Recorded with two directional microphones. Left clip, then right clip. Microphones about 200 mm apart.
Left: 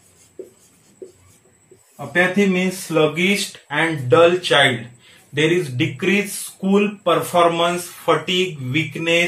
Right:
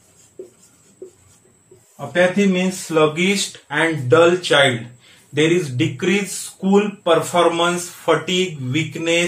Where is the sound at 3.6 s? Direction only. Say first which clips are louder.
Right 2 dB; 25° right (ahead or behind).